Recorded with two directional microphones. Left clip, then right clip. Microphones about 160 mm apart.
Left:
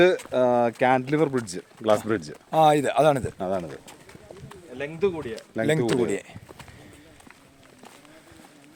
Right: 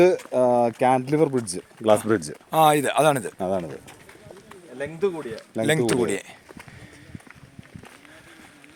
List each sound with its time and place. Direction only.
0.3 s speech: 55° right (ahead or behind)
2.5 s speech: 15° right (ahead or behind)
3.3 s speech: 60° right (ahead or behind)
4.8 s speech: 25° right (ahead or behind)